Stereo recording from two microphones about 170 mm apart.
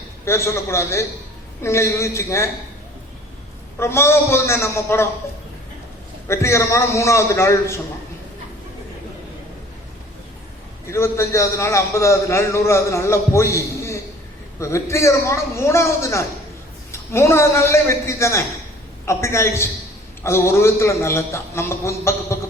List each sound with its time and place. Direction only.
0.3 s a man's voice: 15° left (ahead or behind)
3.8 s a man's voice: 15° left (ahead or behind)
6.2 s a man's voice: 15° left (ahead or behind)
10.8 s a man's voice: 15° left (ahead or behind)